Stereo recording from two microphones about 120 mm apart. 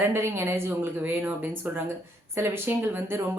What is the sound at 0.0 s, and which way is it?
A woman's voice, 20° right (ahead or behind).